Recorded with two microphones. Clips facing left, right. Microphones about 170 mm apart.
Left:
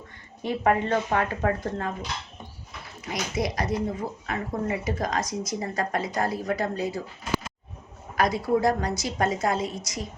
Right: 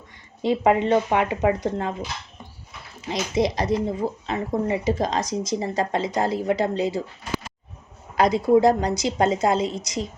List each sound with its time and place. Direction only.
0.4 s a woman's voice: 20° right (ahead or behind)
8.1 s a woman's voice: 25° right (ahead or behind)